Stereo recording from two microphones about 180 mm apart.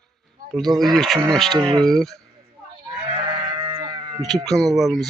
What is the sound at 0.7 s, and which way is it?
Speech, 20° right (ahead or behind).